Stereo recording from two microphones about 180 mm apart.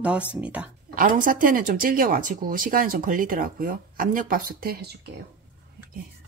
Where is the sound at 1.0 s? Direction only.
50° right (ahead or behind).